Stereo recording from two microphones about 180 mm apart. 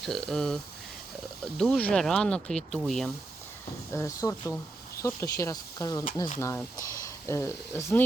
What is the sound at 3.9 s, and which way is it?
Speech, 15° left (ahead or behind).